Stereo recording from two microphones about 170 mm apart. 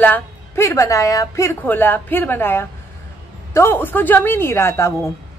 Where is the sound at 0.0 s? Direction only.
15° left (ahead or behind).